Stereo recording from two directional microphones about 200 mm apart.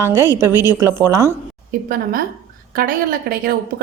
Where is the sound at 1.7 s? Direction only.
45° right (ahead or behind).